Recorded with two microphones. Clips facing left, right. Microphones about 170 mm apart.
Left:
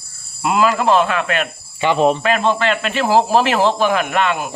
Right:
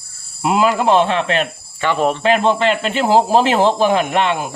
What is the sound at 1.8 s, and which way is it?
Speech, 15° left (ahead or behind).